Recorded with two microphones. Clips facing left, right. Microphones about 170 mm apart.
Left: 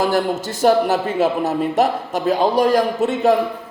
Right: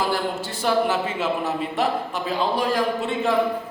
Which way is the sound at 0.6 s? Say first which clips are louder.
Left 6 dB; 40° left (ahead or behind).